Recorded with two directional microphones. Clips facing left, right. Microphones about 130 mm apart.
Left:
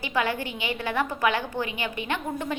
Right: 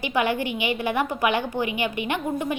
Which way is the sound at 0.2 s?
15° right (ahead or behind).